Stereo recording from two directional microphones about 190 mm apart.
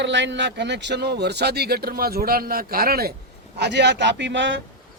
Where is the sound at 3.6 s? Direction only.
65° right (ahead or behind).